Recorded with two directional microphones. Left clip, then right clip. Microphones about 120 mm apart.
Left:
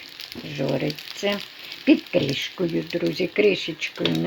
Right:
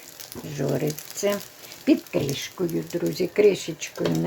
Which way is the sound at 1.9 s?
30° left (ahead or behind).